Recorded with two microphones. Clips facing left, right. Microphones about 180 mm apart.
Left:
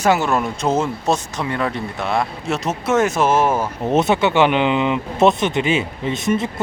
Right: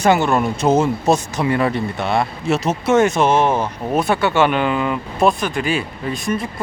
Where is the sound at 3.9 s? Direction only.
20° left (ahead or behind).